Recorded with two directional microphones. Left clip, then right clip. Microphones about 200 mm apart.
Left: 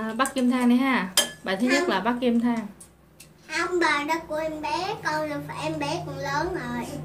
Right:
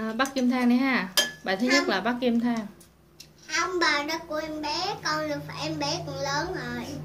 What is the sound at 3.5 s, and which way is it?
A child's voice, 35° right (ahead or behind).